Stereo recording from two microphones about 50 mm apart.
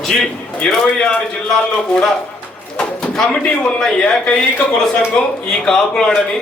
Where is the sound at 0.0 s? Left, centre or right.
Centre.